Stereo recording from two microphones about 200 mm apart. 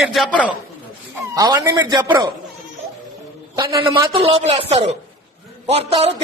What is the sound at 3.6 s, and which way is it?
A man's voice, 20° right (ahead or behind).